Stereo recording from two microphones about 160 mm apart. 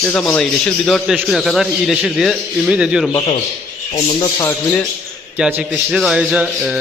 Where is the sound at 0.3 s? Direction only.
5° left (ahead or behind).